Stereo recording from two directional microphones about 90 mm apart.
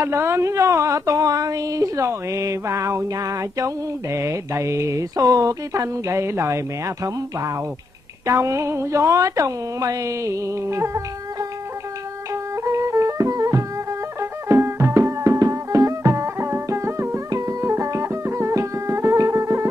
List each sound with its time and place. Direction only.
0.0 s speech: 30° right (ahead or behind)
8.3 s speech: 35° right (ahead or behind)
12.6 s music: 35° right (ahead or behind)
14.5 s music: 30° right (ahead or behind)